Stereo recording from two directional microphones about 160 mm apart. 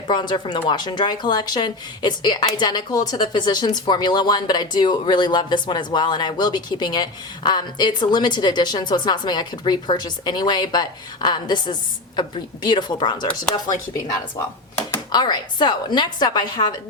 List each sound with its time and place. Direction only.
0.1 s speech: 30° left (ahead or behind)
15.1 s speech: 25° left (ahead or behind)